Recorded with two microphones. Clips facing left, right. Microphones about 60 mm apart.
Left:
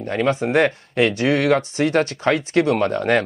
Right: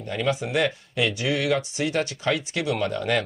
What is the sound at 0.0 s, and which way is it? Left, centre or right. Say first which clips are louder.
Speech: left 6 dB; left.